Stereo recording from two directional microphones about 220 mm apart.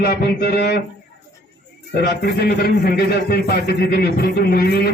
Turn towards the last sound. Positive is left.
turn(degrees=45)  # may be behind; listen again after turning